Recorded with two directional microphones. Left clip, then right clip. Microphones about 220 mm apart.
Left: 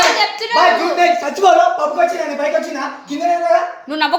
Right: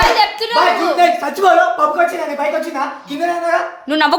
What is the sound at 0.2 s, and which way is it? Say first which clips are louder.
Hands: even; 35° right (ahead or behind).